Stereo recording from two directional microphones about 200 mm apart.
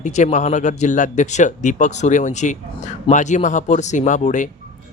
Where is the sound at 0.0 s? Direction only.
35° left (ahead or behind).